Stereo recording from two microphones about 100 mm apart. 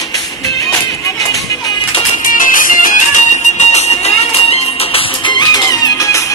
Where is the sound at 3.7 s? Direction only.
90° left.